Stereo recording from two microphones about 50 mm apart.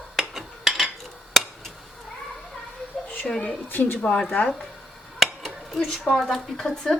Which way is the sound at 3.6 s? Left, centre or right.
Left.